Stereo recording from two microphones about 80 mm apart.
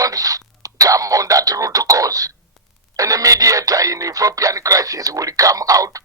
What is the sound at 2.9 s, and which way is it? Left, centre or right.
Speech, right.